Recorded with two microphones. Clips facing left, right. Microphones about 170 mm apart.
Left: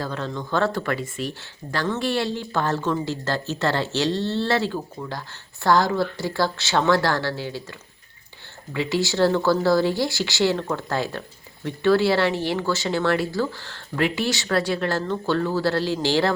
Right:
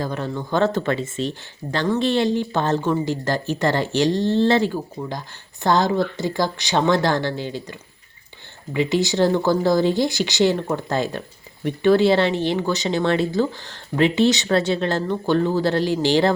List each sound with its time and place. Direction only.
0.0 s speech: 15° right (ahead or behind)